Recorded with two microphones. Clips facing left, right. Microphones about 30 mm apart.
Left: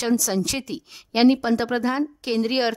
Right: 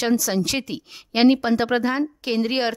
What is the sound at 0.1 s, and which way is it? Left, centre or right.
A woman's voice, centre.